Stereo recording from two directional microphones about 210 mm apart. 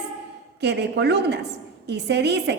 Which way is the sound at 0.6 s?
55° right (ahead or behind).